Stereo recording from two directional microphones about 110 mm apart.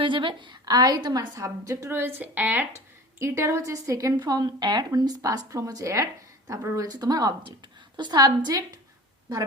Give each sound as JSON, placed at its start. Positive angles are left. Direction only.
{"t": 0.0, "sound": "a woman's voice", "side_deg": -50}
{"t": 1.4, "sound": "speech", "side_deg": -30}